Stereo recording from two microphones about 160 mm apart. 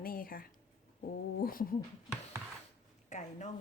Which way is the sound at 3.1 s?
50° left (ahead or behind).